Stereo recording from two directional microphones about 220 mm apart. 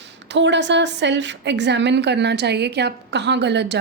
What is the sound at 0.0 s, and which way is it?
A woman's voice, 55° right (ahead or behind).